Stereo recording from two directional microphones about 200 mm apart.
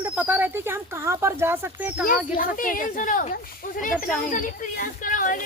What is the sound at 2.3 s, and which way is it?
Speech, 45° left (ahead or behind).